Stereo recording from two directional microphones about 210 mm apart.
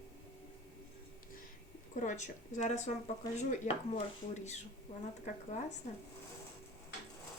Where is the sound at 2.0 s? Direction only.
35° left (ahead or behind).